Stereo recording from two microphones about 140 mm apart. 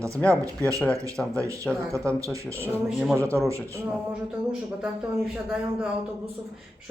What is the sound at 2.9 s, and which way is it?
Speech, centre (ahead or behind).